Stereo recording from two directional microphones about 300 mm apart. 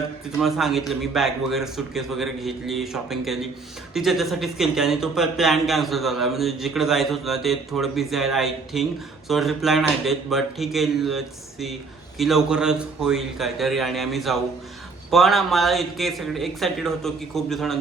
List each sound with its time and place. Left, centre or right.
0.3 s speech: centre